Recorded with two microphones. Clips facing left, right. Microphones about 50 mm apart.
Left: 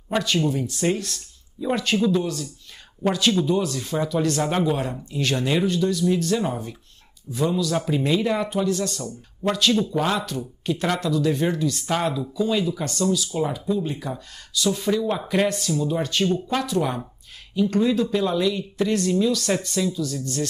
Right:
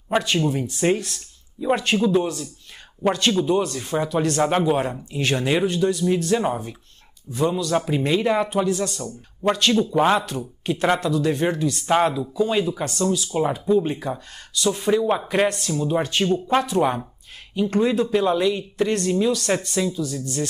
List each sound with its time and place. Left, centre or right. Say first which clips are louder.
0.1 s speech: right 1 dB; right
9.5 s speech: right 2 dB; right
15.6 s speech: right 1 dB; right